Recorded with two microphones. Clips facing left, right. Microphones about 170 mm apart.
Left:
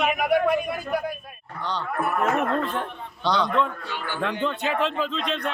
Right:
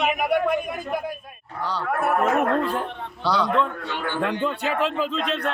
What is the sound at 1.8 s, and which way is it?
Speech, 75° right (ahead or behind).